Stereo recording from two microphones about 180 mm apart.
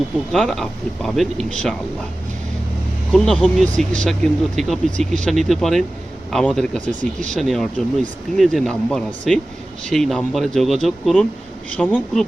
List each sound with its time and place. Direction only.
0.3 s speech: centre (ahead or behind)
3.1 s speech: 5° left (ahead or behind)
7.0 s speech: 45° right (ahead or behind)
7.3 s speech: centre (ahead or behind)